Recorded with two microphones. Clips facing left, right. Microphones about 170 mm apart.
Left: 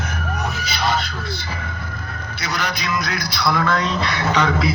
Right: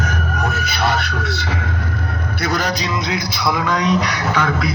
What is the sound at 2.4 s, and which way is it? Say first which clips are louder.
Speech: right 5 dB; 45° right (ahead or behind).